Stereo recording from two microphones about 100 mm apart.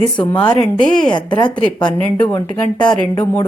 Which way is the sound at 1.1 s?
50° left (ahead or behind).